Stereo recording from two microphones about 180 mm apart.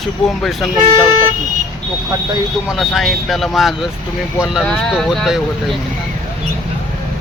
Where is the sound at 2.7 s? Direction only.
Centre (ahead or behind).